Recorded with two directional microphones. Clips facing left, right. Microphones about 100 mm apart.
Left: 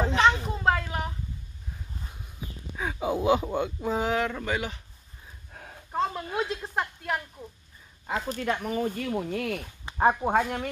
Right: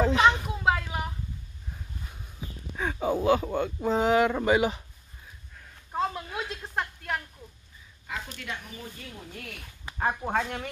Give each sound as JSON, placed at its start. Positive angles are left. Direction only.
{"t": 0.1, "sound": "a sound", "side_deg": -5}
{"t": 2.8, "sound": "speech", "side_deg": 10}
{"t": 3.8, "sound": "speech", "side_deg": 0}
{"t": 4.3, "sound": "speech", "side_deg": -20}
{"t": 5.5, "sound": "a sound", "side_deg": 60}
{"t": 5.9, "sound": "a sound", "side_deg": 0}
{"t": 8.1, "sound": "speech", "side_deg": 40}
{"t": 8.7, "sound": "speech", "side_deg": 70}
{"t": 9.8, "sound": "speech", "side_deg": 25}
{"t": 10.3, "sound": "speech", "side_deg": 10}